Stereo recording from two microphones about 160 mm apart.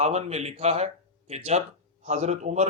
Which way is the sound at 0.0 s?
45° right (ahead or behind).